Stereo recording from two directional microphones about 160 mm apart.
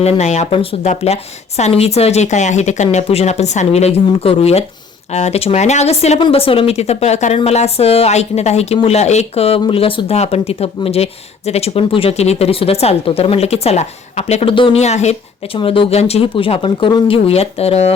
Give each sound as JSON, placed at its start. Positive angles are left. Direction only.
{"t": 0.0, "sound": "a woman's voice", "side_deg": 45}
{"t": 15.5, "sound": "a woman's voice", "side_deg": 30}